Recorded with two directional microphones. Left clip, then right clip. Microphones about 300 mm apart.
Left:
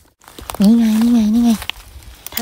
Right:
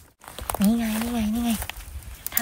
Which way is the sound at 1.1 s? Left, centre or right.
Centre.